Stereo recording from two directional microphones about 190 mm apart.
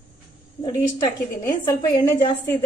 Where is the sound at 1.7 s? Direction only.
20° left (ahead or behind).